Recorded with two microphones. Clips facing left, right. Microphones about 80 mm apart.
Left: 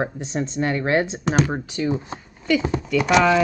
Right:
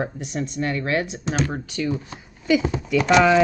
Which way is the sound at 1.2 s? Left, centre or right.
Left.